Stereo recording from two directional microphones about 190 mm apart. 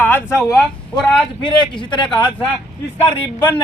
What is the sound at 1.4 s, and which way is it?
Speech, 25° left (ahead or behind).